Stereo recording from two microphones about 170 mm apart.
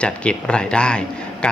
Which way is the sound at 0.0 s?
5° left (ahead or behind).